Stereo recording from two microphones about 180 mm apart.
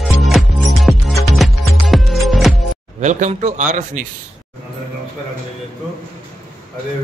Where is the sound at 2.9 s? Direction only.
40° right (ahead or behind).